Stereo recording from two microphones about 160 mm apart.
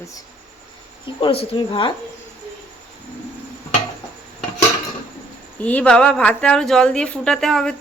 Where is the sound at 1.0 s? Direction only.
35° left (ahead or behind).